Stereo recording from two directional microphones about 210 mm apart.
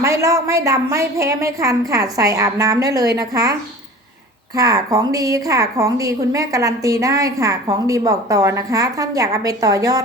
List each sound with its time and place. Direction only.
0.0 s a woman's voice: 15° right (ahead or behind)